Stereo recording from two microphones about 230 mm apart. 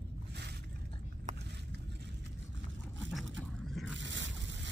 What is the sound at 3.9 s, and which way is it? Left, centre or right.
Scrape, right.